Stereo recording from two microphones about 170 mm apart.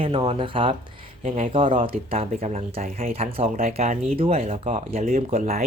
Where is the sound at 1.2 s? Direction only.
45° right (ahead or behind).